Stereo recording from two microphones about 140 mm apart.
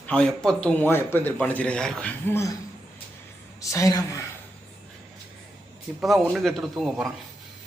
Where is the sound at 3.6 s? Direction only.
25° left (ahead or behind).